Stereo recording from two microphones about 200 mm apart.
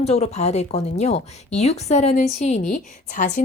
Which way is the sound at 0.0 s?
30° left (ahead or behind).